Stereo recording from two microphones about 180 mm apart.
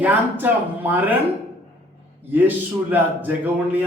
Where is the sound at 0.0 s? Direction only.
10° right (ahead or behind).